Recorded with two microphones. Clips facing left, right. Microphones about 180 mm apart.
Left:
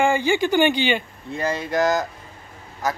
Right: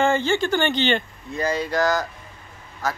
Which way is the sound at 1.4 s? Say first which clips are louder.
Even; 25° left (ahead or behind).